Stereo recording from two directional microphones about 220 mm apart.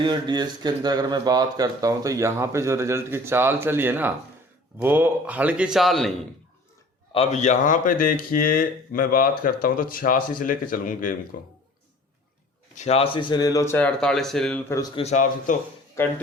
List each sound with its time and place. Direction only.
0.0 s speech: 20° right (ahead or behind); by 6.1 s centre (ahead or behind)
7.1 s speech: 30° left (ahead or behind)
12.7 s speech: 30° left (ahead or behind); by 14.6 s centre (ahead or behind)
14.7 s speech: 15° left (ahead or behind)
15.0 s speech: 35° left (ahead or behind)
16.0 s speech: 10° left (ahead or behind)